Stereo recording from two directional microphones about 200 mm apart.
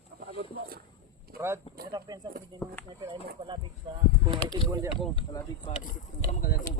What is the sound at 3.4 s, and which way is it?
Speech, 25° right (ahead or behind).